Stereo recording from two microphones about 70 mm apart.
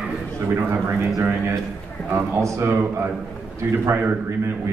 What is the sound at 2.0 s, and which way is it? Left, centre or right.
Speech, right.